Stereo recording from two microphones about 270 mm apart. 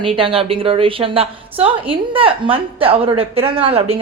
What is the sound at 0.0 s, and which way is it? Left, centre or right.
A woman's voice, centre.